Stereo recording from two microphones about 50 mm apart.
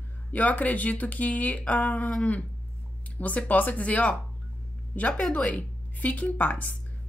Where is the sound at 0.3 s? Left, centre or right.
Left.